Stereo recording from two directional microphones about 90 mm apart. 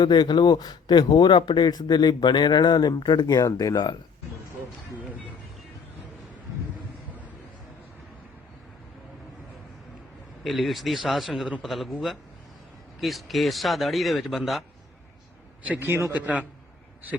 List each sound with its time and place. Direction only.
0.0 s a man's voice: 50° left (ahead or behind)
3.4 s speech: 40° left (ahead or behind)
10.4 s speech: centre (ahead or behind)
13.0 s speech: centre (ahead or behind)
15.6 s a man's voice: 20° right (ahead or behind)
16.1 s a man's voice: 15° right (ahead or behind)